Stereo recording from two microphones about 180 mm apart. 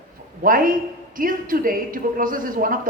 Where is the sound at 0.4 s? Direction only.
50° right (ahead or behind).